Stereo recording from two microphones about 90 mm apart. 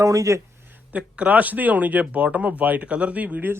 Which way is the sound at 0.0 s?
40° right (ahead or behind).